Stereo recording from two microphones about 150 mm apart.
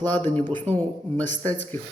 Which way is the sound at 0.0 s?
10° left (ahead or behind).